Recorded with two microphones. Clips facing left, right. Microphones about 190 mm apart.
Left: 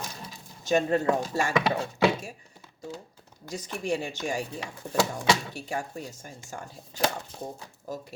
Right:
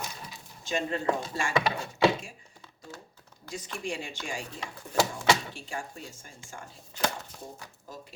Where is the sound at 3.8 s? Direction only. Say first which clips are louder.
Left 8 dB; 40° left (ahead or behind).